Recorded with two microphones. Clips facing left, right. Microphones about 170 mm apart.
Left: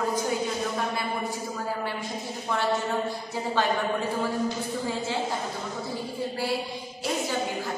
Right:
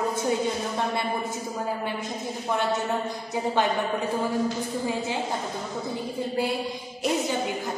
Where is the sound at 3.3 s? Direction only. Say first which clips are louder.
Right 3 dB; 20° right (ahead or behind).